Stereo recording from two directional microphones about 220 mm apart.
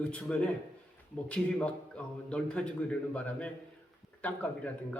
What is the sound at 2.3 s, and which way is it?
A man's voice, 5° left (ahead or behind).